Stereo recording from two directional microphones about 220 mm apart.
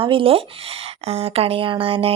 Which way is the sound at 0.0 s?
25° right (ahead or behind).